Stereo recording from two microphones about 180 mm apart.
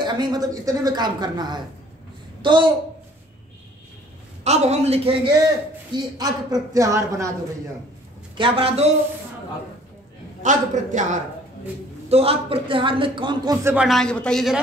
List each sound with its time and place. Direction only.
0.0 s a man's voice: 25° right (ahead or behind)
4.5 s a man's voice: 35° right (ahead or behind); by 7.3 s 15° right (ahead or behind)
8.4 s a man's voice: 30° right (ahead or behind)
10.4 s a woman's voice: 45° right (ahead or behind)
12.1 s a man's voice: 35° right (ahead or behind)
13.7 s speech: centre (ahead or behind)